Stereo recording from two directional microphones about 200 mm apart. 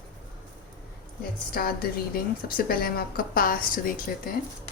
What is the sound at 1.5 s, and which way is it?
A woman's voice, 45° left (ahead or behind).